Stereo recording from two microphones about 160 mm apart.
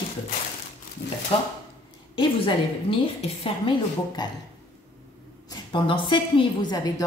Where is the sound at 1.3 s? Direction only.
35° left (ahead or behind).